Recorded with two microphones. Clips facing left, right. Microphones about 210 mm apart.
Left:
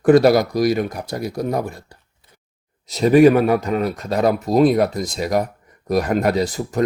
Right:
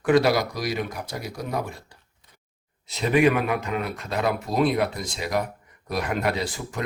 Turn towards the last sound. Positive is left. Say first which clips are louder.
# left 9 dB
turn(degrees=40)  # may be behind; listen again after turning